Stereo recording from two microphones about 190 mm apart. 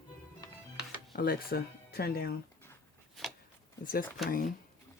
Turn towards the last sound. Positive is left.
turn(degrees=0)  # may be behind; listen again after turning